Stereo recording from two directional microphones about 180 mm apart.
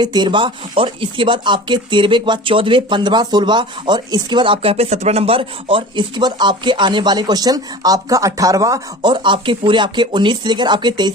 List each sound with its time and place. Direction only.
0.0 s speech: 25° right (ahead or behind)